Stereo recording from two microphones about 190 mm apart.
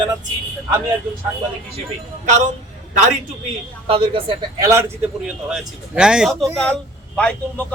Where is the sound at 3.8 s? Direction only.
30° right (ahead or behind).